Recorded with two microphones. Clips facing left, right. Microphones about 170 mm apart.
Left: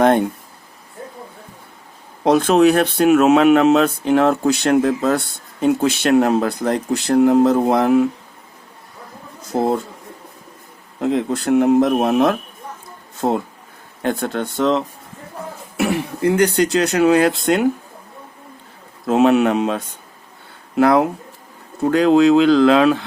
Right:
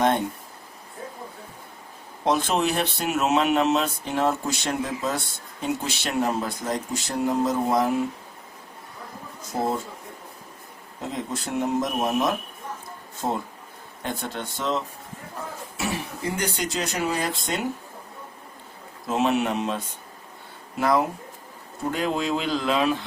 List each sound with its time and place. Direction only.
2.2 s speech: 70° left (ahead or behind)
5.6 s speech: 55° left (ahead or behind)
9.5 s speech: 70° left (ahead or behind)
11.0 s speech: 70° left (ahead or behind)
19.0 s speech: 65° left (ahead or behind)
21.8 s speech: 90° left